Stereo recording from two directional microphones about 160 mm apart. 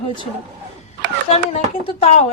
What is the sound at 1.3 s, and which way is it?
Speech, 40° left (ahead or behind).